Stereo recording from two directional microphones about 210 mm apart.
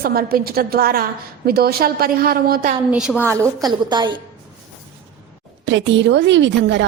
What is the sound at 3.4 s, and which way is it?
Speech, 20° right (ahead or behind).